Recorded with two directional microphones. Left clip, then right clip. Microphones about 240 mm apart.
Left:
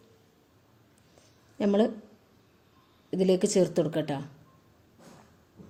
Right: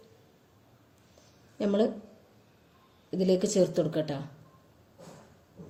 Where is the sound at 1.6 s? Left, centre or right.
Left.